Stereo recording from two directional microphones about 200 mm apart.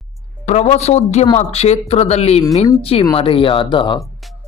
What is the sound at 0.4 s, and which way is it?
Speech, 35° left (ahead or behind).